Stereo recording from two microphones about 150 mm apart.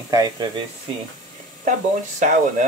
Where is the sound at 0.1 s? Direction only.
25° right (ahead or behind).